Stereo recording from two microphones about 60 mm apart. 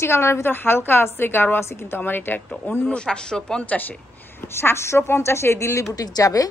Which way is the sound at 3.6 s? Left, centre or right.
Left.